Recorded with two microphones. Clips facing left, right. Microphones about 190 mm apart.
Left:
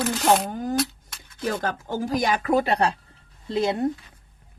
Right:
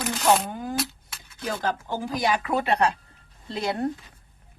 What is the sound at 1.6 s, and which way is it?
Speech, 45° left (ahead or behind).